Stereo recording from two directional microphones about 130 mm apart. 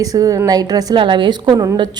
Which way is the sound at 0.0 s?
25° right (ahead or behind).